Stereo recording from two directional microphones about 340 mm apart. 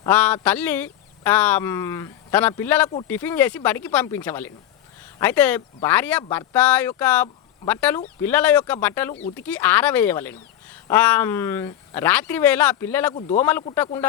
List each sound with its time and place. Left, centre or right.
0.0 s speech: centre
13.1 s a man's voice: centre
13.4 s speech: centre